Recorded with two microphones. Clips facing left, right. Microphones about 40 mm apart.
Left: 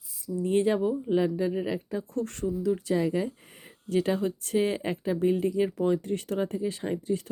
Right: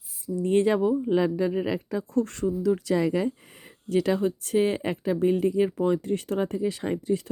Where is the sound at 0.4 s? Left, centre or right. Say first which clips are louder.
Right 3 dB; right.